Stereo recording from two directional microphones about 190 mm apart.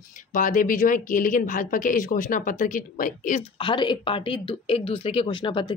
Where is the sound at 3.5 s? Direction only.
25° left (ahead or behind).